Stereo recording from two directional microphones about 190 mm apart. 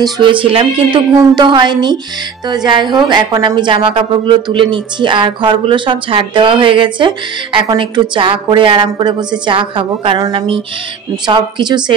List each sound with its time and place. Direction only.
0.0 s a woman's voice: 25° right (ahead or behind)